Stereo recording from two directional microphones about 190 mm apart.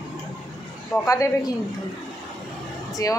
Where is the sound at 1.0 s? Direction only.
15° left (ahead or behind).